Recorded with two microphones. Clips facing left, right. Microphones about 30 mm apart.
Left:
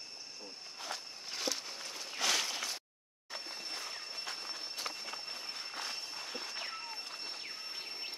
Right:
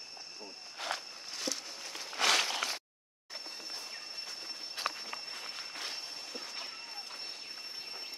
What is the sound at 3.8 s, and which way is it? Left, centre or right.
Train, left.